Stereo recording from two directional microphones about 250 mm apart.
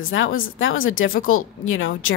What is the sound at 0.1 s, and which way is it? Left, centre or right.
Speech, left.